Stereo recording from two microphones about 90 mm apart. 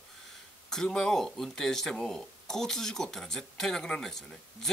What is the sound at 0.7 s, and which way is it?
Speech, 5° left (ahead or behind).